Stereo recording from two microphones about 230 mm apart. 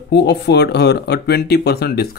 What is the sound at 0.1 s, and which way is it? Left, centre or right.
Speech, left.